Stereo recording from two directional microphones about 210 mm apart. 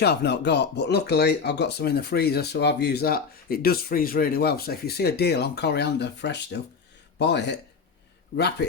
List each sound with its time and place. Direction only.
0.0 s speech: 50° left (ahead or behind)